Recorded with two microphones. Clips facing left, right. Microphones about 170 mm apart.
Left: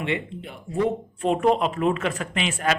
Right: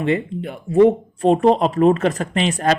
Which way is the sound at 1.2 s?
35° right (ahead or behind).